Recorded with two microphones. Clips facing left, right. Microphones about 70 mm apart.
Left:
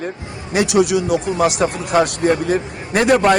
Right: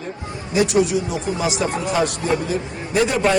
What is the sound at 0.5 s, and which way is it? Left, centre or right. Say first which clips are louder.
Speech: left 2 dB; left.